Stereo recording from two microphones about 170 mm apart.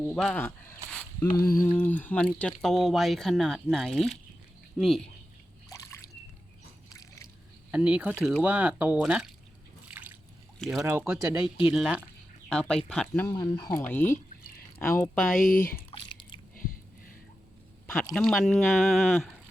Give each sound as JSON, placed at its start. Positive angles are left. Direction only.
{"t": 0.0, "sound": "speech", "side_deg": 0}
{"t": 1.6, "sound": "speech", "side_deg": 10}
{"t": 5.6, "sound": "trickle", "side_deg": 20}
{"t": 7.7, "sound": "speech", "side_deg": -10}
{"t": 9.9, "sound": "a sound", "side_deg": -10}
{"t": 10.6, "sound": "speech", "side_deg": 0}
{"t": 10.8, "sound": "speech", "side_deg": -15}
{"t": 13.2, "sound": "speech", "side_deg": 25}
{"t": 13.7, "sound": "speech", "side_deg": 10}
{"t": 15.4, "sound": "speech", "side_deg": 55}
{"t": 15.9, "sound": "chewing", "side_deg": 30}
{"t": 18.1, "sound": "speech", "side_deg": 5}